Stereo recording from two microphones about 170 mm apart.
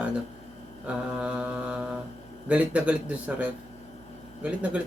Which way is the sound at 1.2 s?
5° right (ahead or behind).